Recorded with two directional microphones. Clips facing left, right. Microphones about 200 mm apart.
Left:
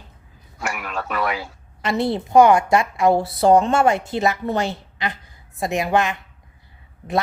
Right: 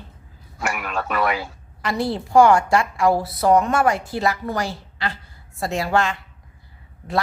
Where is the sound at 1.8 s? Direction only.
20° left (ahead or behind).